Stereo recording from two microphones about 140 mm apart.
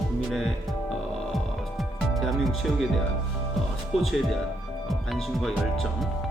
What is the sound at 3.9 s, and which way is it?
Speech, centre (ahead or behind).